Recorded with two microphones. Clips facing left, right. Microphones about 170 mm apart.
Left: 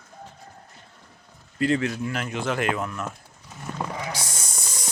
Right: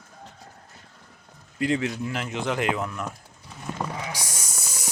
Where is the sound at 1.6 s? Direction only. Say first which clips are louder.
Left 2 dB; 15° right (ahead or behind).